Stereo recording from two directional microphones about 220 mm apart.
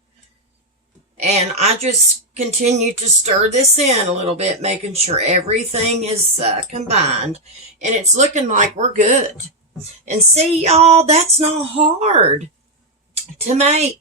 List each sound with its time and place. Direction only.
1.1 s a woman's voice: 30° right (ahead or behind)
13.6 s a woman's voice: 30° right (ahead or behind)